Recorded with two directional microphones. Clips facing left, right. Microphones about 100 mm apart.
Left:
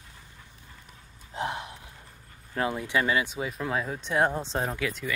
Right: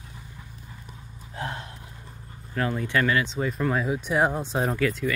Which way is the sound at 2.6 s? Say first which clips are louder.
Right 2 dB; 15° left (ahead or behind).